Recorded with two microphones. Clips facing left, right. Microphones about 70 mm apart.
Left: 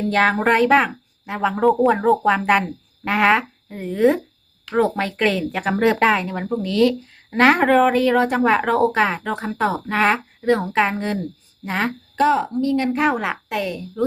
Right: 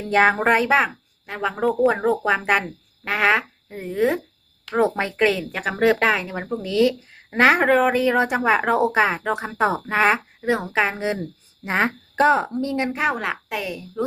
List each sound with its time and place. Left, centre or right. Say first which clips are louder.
0.0 s speech: even; centre
4.7 s speech: left 1 dB; centre
9.8 s speech: even; centre
11.2 s a woman's voice: left 3 dB; right
12.9 s speech: left 3 dB; centre